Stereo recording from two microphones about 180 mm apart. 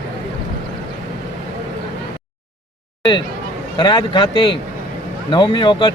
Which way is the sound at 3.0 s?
25° left (ahead or behind).